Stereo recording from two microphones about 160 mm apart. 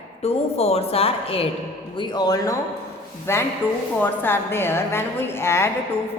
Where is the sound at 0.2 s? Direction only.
40° left (ahead or behind).